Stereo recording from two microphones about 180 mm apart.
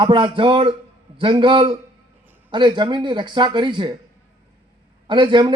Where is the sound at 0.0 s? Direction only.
30° right (ahead or behind).